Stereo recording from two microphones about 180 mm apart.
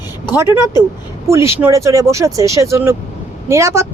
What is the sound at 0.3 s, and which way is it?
Speech, 15° right (ahead or behind).